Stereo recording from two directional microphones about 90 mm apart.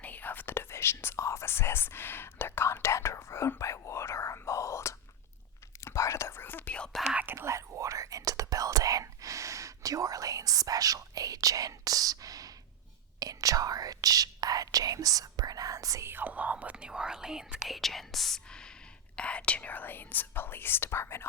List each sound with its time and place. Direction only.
0.0 s whispering: 20° left (ahead or behind)
6.7 s whispering: 10° left (ahead or behind)
7.3 s whispering: 35° right (ahead or behind)
16.0 s speech: 20° right (ahead or behind); by 21.2 s 30° left (ahead or behind)